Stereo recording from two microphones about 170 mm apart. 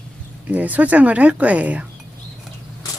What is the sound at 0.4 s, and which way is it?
Speech, 10° right (ahead or behind).